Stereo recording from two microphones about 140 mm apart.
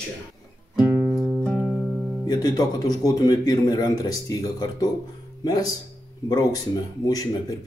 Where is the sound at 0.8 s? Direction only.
15° right (ahead or behind).